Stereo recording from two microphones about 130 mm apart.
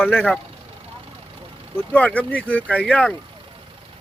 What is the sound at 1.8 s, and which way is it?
Speech, 10° left (ahead or behind).